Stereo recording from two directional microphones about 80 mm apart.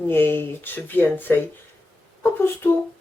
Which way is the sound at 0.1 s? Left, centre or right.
Left.